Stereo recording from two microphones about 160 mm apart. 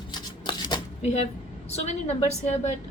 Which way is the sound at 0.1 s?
25° left (ahead or behind).